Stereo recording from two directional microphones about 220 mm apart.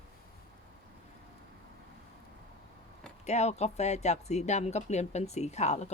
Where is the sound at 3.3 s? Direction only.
30° left (ahead or behind).